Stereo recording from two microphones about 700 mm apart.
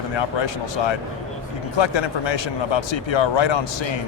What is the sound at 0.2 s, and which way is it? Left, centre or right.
Speech, left.